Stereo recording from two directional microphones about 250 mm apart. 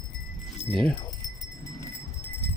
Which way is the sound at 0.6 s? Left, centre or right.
Left.